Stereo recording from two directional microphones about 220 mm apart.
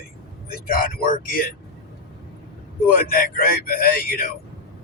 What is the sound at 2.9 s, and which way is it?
Speech, 40° left (ahead or behind).